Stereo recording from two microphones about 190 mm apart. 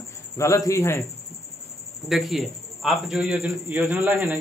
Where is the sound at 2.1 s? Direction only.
Centre (ahead or behind).